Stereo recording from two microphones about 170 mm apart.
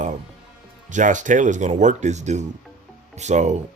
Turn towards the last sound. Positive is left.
turn(degrees=-45)  # may be behind; listen again after turning